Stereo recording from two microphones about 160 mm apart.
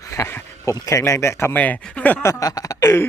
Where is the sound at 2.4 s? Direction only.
20° left (ahead or behind).